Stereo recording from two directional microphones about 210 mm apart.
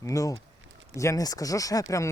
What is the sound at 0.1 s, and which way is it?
Speech, 15° left (ahead or behind).